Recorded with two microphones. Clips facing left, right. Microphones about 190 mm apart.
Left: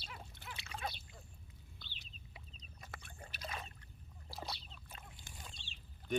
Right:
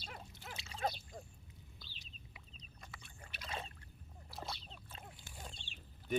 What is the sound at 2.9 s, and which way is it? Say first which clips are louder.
Boat: left 7 dB; 55° left (ahead or behind).